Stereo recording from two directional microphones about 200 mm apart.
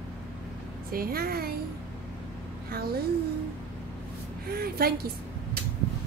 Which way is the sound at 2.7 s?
50° right (ahead or behind).